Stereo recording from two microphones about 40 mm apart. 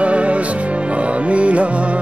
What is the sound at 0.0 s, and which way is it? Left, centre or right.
Music, right.